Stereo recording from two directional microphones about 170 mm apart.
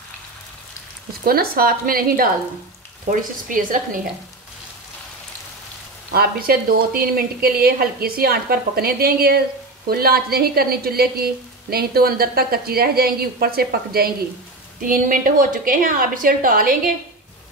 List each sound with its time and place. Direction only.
1.2 s a woman's voice: 60° right (ahead or behind)
6.1 s a woman's voice: 60° right (ahead or behind)
14.8 s a woman's voice: 55° right (ahead or behind)